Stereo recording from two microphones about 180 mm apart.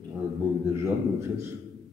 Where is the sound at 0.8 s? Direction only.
15° right (ahead or behind).